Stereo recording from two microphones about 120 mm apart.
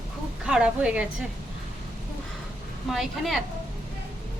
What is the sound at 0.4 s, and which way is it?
Speech, 10° right (ahead or behind).